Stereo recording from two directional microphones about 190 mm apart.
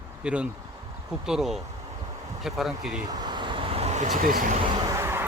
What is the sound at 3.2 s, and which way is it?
Vehicle, 25° right (ahead or behind).